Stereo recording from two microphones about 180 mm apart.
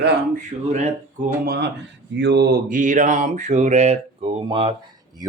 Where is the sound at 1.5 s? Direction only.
65° right (ahead or behind).